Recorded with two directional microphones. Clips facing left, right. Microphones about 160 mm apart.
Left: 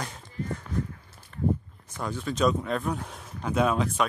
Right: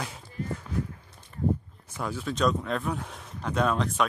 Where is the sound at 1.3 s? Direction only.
15° right (ahead or behind).